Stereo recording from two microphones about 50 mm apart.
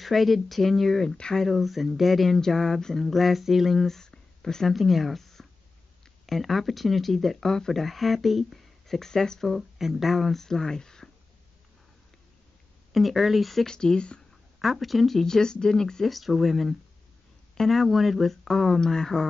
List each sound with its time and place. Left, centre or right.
0.0 s speech: centre
1.1 s speech: centre
1.4 s speech: centre
4.6 s speech: centre
9.5 s speech: centre
12.9 s speech: centre
13.7 s speech: centre
14.6 s speech: centre
16.1 s speech: centre